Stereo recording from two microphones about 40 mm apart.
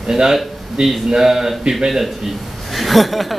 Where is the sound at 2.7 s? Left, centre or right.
Centre.